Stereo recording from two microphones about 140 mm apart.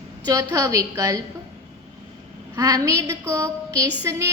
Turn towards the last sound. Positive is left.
turn(degrees=-20)  # may be behind; listen again after turning